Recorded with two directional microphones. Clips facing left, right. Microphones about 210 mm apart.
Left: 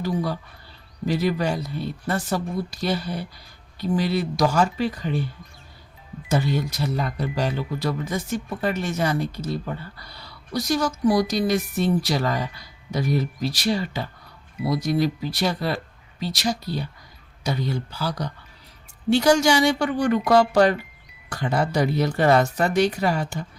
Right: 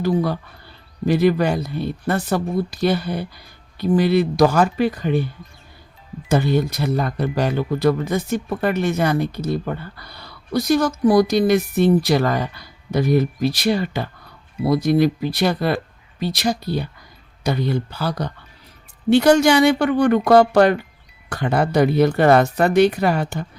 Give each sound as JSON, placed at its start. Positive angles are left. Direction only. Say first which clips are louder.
{"t": 0.0, "sound": "speech", "louder": "right 6 dB", "side_deg": -60}
{"t": 6.2, "sound": "speech", "louder": "right 5 dB", "side_deg": -60}